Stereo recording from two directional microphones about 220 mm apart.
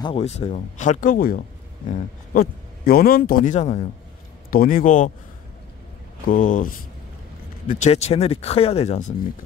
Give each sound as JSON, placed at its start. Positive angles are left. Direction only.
{"t": 0.0, "sound": "speech", "side_deg": 25}
{"t": 6.2, "sound": "speech", "side_deg": 35}